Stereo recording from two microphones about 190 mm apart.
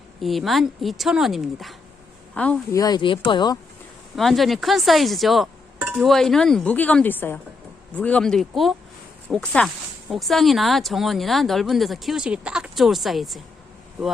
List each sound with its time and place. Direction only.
0.2 s speech: centre (ahead or behind)
2.7 s speech: 20° left (ahead or behind)
4.1 s speech: centre (ahead or behind)